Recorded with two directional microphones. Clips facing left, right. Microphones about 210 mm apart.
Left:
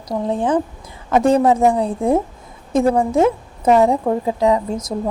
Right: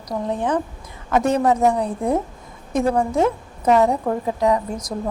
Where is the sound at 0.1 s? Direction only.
30° left (ahead or behind).